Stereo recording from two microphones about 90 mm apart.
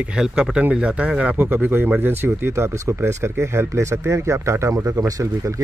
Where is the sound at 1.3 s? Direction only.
20° right (ahead or behind); by 5.2 s 35° right (ahead or behind).